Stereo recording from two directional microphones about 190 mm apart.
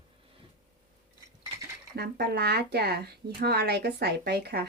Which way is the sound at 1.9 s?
60° right (ahead or behind).